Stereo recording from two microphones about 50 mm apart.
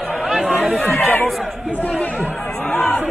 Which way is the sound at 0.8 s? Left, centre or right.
Left.